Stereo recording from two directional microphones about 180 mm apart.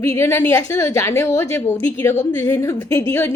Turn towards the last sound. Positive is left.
turn(degrees=15)  # may be behind; listen again after turning